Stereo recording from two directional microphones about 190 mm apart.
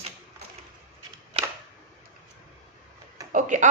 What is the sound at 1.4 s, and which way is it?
Camera, 30° right (ahead or behind).